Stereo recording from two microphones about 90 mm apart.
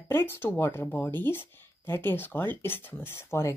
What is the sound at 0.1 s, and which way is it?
Speech, 25° left (ahead or behind).